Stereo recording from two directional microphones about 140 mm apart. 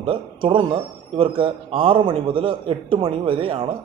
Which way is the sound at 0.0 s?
35° right (ahead or behind).